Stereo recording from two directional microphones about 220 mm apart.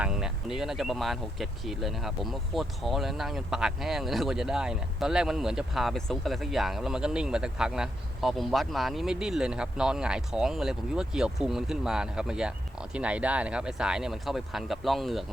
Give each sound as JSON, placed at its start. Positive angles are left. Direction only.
{"t": 0.0, "sound": "speech", "side_deg": -5}